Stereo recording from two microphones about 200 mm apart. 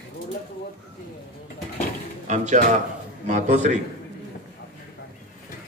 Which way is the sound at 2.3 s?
35° right (ahead or behind).